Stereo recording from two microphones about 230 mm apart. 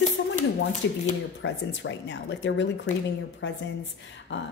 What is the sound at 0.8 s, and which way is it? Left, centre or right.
Speech, left.